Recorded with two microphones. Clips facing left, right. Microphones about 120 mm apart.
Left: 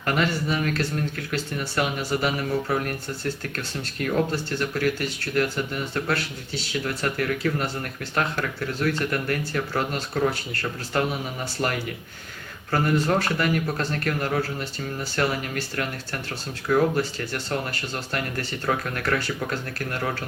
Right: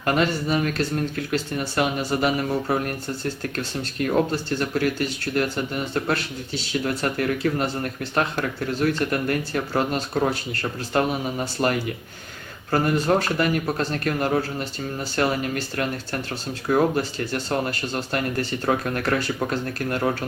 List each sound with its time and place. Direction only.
0.0 s speech: 25° right (ahead or behind)